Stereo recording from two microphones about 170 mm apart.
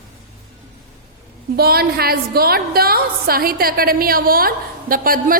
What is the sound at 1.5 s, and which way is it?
A woman's voice, 65° right (ahead or behind).